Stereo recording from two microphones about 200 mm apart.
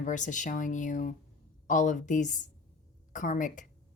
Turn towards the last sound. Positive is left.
turn(degrees=40)  # may be behind; listen again after turning